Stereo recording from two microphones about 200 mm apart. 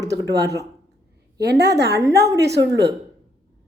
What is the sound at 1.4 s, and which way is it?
Speech, 55° right (ahead or behind).